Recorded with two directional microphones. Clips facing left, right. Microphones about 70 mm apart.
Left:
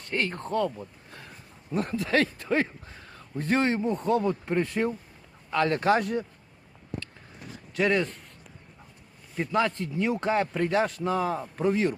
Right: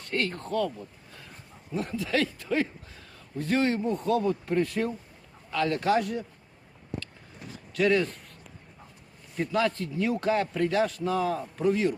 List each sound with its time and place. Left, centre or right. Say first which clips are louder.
0.1 s a man's voice: left 1 dB; left
1.7 s hoot: left 3 dB; left
3.1 s a man's voice: left 1 dB; left
7.7 s speech: right 1 dB; left
9.4 s a man's voice: left 1 dB; left